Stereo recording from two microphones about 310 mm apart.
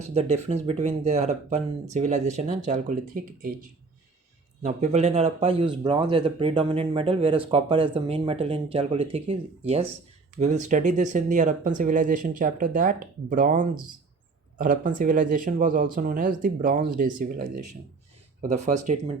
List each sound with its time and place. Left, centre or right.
0.0 s speech: centre
4.6 s speech: right